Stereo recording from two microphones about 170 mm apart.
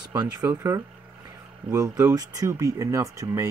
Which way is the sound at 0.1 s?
20° right (ahead or behind).